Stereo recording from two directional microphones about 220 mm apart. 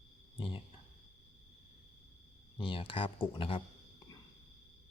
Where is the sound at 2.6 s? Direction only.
20° left (ahead or behind).